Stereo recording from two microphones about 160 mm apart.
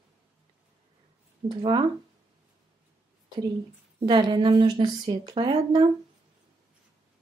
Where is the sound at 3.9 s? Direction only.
30° right (ahead or behind).